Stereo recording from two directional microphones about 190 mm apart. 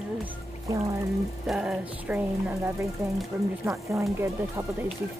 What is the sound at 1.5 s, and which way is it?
Speech, 5° right (ahead or behind).